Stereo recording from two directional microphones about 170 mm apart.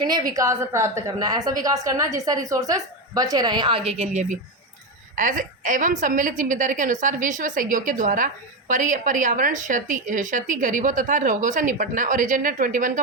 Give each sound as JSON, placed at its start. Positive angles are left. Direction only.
{"t": 0.0, "sound": "a woman's voice", "side_deg": -25}